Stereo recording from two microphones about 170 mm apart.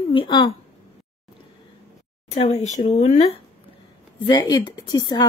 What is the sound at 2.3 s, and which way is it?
Speech, 40° left (ahead or behind).